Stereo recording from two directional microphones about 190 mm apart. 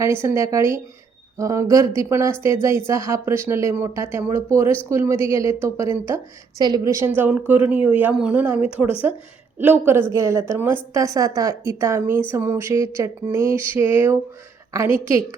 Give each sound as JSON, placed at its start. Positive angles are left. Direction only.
{"t": 0.0, "sound": "speech", "side_deg": -15}